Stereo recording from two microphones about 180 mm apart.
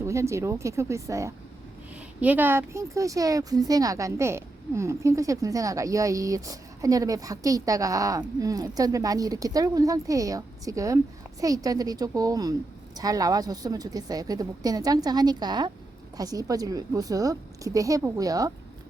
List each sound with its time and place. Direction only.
0.0 s a woman's voice: 15° right (ahead or behind)